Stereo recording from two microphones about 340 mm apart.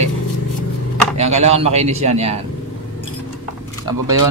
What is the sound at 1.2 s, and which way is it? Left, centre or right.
Speech, centre.